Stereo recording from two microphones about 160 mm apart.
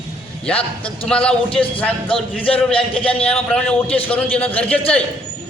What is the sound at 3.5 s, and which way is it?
A man's voice, 5° left (ahead or behind).